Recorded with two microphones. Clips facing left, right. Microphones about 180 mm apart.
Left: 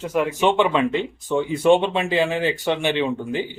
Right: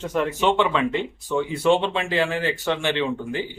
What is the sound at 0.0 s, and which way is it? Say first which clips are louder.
A man's voice: left 2 dB; 10° left (ahead or behind).